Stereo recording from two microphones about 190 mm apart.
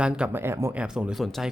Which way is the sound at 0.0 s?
10° right (ahead or behind).